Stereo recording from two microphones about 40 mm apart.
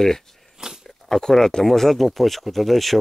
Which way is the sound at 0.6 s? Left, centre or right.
Centre.